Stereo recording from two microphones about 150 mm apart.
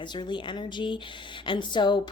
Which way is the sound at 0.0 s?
30° left (ahead or behind).